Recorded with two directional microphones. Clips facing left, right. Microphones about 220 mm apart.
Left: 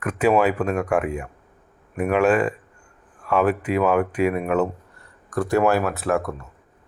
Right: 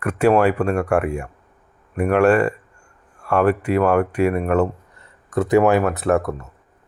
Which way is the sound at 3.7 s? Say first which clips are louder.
Right 1 dB; 5° left (ahead or behind).